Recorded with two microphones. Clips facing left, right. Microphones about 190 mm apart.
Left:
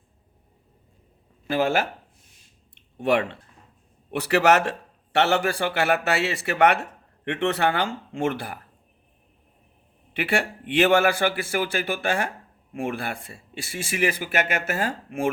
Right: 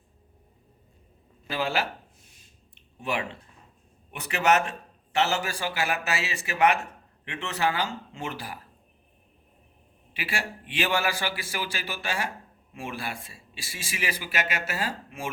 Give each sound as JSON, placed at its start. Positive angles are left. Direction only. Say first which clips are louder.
{"t": 1.5, "sound": "speech", "louder": "left 6 dB", "side_deg": 50}
{"t": 4.1, "sound": "a man's voice", "louder": "left 5 dB", "side_deg": 70}
{"t": 10.2, "sound": "speech", "louder": "left 9 dB", "side_deg": 60}